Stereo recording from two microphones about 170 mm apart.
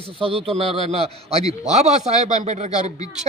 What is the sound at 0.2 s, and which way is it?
A man's voice, 30° right (ahead or behind).